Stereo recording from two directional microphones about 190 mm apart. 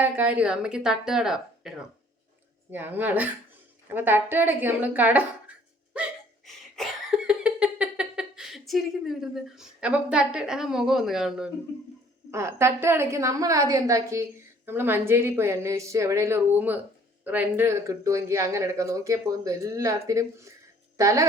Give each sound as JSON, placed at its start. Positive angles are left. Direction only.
{"t": 0.0, "sound": "a woman's voice", "side_deg": -10}
{"t": 2.7, "sound": "a woman's voice", "side_deg": -10}
{"t": 3.8, "sound": "a sound", "side_deg": -10}
{"t": 12.3, "sound": "a woman's voice", "side_deg": -15}